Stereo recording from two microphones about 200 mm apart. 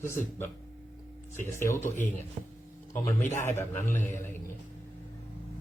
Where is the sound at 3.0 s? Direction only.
40° left (ahead or behind).